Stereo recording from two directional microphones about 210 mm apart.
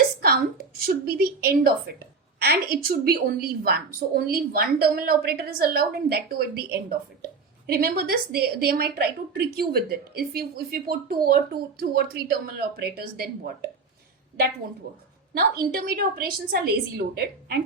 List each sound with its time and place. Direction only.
0.2 s a woman's voice: 45° right (ahead or behind)
15.4 s a woman's voice: 45° right (ahead or behind)